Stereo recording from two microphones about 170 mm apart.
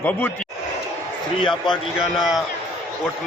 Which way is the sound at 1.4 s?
30° left (ahead or behind).